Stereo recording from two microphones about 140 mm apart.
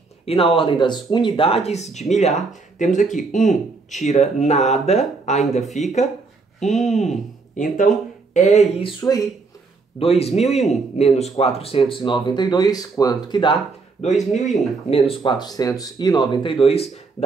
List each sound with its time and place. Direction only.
0.2 s speech: 45° left (ahead or behind)
5.6 s speech: centre (ahead or behind)
6.8 s speech: 55° left (ahead or behind)
8.3 s speech: 55° left (ahead or behind)
9.9 s speech: 45° left (ahead or behind)
14.0 s speech: 55° left (ahead or behind)
14.9 s speech: 45° left (ahead or behind)